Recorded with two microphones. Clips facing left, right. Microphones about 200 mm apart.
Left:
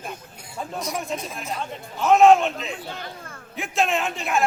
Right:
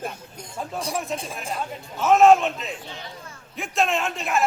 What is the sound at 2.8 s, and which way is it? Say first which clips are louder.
Speech: left 4 dB; 55° left (ahead or behind).